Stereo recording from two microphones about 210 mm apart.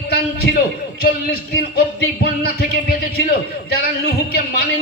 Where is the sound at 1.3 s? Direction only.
50° left (ahead or behind).